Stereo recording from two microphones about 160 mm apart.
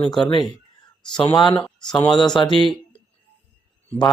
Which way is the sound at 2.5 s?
30° right (ahead or behind).